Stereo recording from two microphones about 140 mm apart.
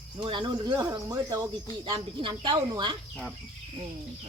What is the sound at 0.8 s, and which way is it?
Speech, 20° right (ahead or behind).